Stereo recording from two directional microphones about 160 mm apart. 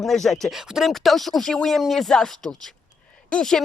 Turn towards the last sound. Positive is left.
turn(degrees=5)  # may be behind; listen again after turning